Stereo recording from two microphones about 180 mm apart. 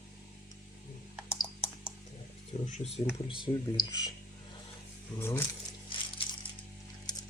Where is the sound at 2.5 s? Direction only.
35° left (ahead or behind).